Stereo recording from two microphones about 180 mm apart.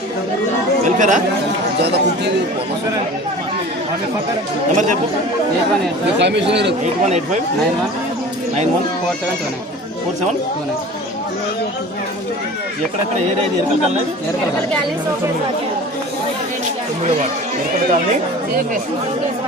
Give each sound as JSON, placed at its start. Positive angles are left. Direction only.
{"t": 0.9, "sound": "speech", "side_deg": -45}
{"t": 1.8, "sound": "speech", "side_deg": -65}
{"t": 4.7, "sound": "speech", "side_deg": -45}
{"t": 6.1, "sound": "speech", "side_deg": -75}
{"t": 18.1, "sound": "speech", "side_deg": -45}